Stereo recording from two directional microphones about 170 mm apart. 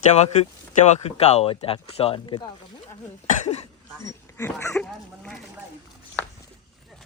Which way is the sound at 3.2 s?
45° left (ahead or behind).